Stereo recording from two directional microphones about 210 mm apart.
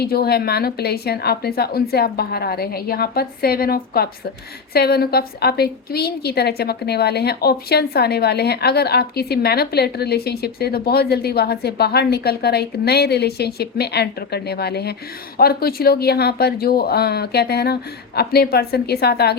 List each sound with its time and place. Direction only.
0.0 s a woman's voice: 50° left (ahead or behind)